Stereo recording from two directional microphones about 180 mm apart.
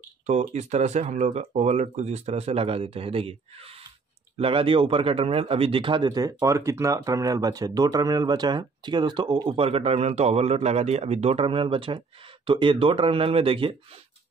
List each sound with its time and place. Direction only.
0.3 s speech: 40° right (ahead or behind)